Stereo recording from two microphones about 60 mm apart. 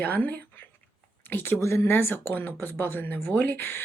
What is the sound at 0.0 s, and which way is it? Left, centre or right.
Speech, left.